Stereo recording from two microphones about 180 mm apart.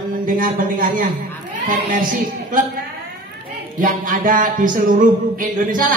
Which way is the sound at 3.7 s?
50° right (ahead or behind).